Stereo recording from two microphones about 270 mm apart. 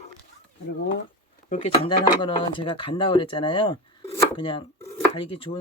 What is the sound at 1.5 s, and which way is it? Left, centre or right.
Speech, left.